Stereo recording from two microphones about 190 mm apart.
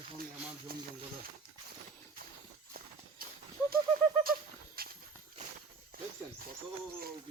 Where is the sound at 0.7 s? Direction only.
55° right (ahead or behind).